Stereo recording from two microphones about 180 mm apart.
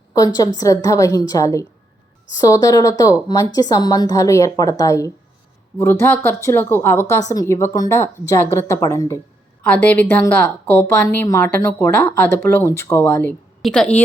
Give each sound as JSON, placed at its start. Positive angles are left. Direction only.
{"t": 0.1, "sound": "a woman's voice", "side_deg": 20}